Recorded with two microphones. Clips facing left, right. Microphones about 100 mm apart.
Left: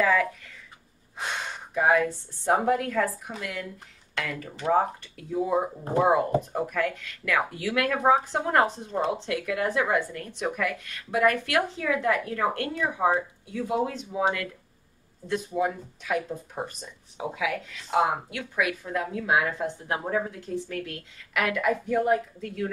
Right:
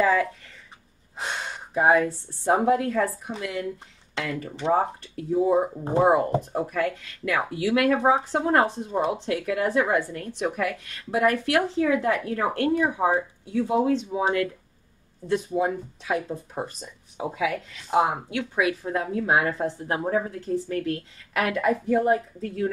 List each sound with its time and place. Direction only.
0.0 s speech: 30° right (ahead or behind)
1.7 s a woman's voice: 35° right (ahead or behind)
17.2 s a woman's voice: 35° right (ahead or behind)